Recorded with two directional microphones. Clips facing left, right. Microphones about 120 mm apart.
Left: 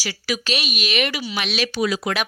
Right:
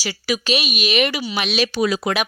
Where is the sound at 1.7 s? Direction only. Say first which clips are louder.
Even; 40° right (ahead or behind).